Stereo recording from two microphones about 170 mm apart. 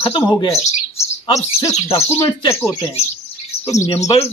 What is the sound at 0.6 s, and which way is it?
Speech, 40° left (ahead or behind).